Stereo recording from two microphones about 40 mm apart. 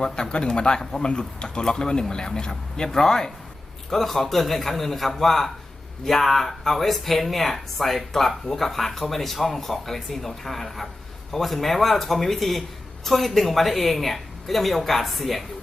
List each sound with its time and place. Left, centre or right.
0.0 s a man's voice: left; by 15.4 s centre